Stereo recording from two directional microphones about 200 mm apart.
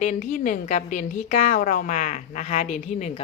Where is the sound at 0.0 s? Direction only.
40° left (ahead or behind).